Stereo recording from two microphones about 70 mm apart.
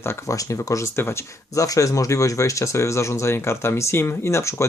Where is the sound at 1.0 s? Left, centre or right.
Left.